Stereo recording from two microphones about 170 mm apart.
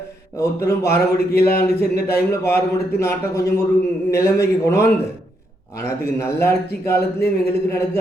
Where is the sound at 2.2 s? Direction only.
15° left (ahead or behind).